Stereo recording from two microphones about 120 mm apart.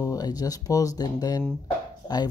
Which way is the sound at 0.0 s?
30° left (ahead or behind).